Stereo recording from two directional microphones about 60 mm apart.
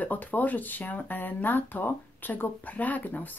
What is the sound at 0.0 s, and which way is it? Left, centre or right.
Speech, left.